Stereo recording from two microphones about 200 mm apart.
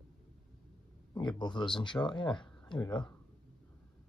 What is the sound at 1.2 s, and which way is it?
Speech, 25° left (ahead or behind).